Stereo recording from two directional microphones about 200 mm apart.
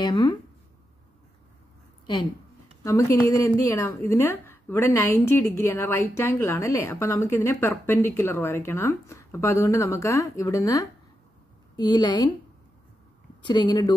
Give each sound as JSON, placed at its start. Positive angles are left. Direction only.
{"t": 0.0, "sound": "speech", "side_deg": 20}
{"t": 2.8, "sound": "a woman's voice", "side_deg": 15}
{"t": 13.4, "sound": "a woman's voice", "side_deg": 20}